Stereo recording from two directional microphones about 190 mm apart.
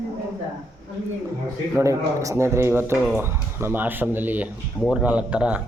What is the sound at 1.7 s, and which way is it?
Speech, 15° right (ahead or behind).